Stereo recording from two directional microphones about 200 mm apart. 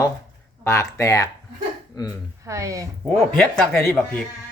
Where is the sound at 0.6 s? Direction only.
15° left (ahead or behind).